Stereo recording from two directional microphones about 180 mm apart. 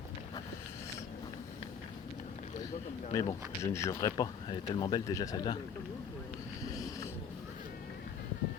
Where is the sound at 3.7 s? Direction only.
15° left (ahead or behind).